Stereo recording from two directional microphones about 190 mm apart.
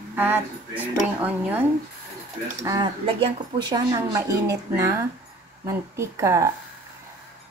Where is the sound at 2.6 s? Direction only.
20° right (ahead or behind).